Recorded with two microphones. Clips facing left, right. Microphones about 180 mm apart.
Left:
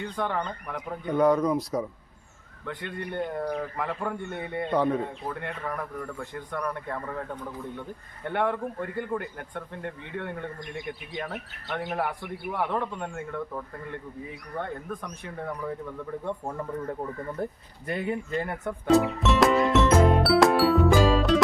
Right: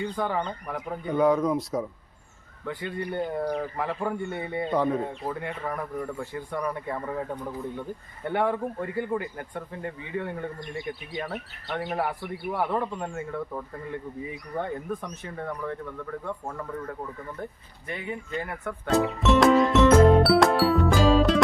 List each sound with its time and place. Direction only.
0.0 s speech: 5° right (ahead or behind)
16.2 s speech: 20° left (ahead or behind)
17.9 s speech: 40° left (ahead or behind)
18.9 s music: centre (ahead or behind)